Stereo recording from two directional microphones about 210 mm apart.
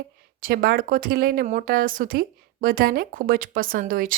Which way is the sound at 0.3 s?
45° right (ahead or behind).